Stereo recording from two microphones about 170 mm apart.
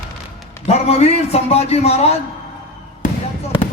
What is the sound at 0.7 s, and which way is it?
A man's voice, 40° left (ahead or behind).